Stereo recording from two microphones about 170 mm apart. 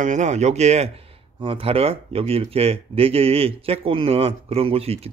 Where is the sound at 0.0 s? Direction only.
45° right (ahead or behind).